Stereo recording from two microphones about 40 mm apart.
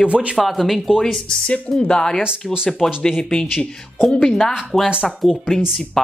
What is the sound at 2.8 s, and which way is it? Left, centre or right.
Speech, centre.